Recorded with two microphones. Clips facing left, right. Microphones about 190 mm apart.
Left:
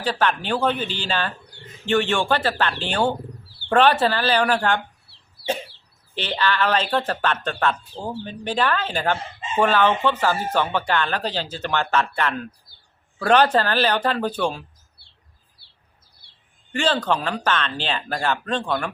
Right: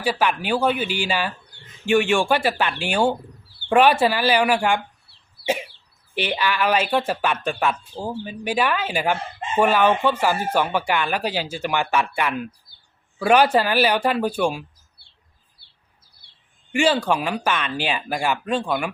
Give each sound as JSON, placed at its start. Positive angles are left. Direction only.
{"t": 0.0, "sound": "speech", "side_deg": -10}
{"t": 6.1, "sound": "speech", "side_deg": -10}
{"t": 15.6, "sound": "chirp", "side_deg": -55}
{"t": 16.7, "sound": "speech", "side_deg": -10}